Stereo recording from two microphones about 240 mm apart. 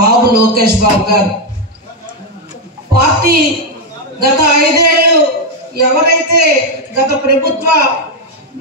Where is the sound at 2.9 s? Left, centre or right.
Right.